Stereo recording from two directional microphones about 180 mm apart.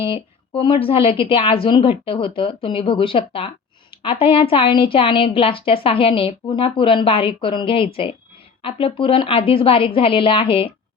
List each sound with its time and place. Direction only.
0.1 s a woman's voice: 30° left (ahead or behind)